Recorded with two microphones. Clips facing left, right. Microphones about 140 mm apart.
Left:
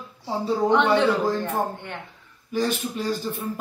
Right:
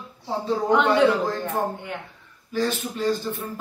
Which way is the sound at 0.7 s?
10° right (ahead or behind).